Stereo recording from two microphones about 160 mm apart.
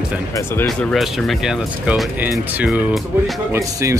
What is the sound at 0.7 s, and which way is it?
Speech, 5° left (ahead or behind).